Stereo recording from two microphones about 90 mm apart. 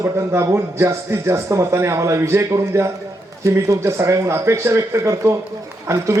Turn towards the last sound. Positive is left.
turn(degrees=-35)  # may be behind; listen again after turning